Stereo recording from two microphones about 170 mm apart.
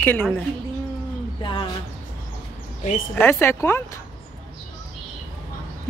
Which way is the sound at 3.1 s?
15° left (ahead or behind).